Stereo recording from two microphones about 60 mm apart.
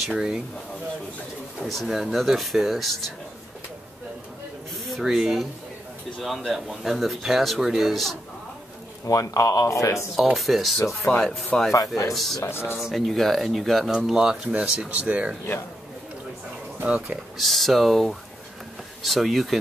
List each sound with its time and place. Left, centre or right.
0.1 s speech: centre
1.7 s speech: centre
5.0 s speech: centre
9.0 s speech: left
10.1 s speech: centre
12.4 s speech: left
12.7 s speech: centre
13.9 s speech: centre
16.8 s speech: centre
17.4 s speech: centre